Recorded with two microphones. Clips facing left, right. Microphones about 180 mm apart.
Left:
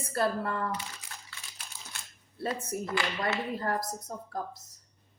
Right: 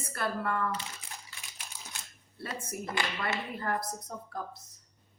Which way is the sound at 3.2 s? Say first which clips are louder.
Left 3 dB; 35° left (ahead or behind).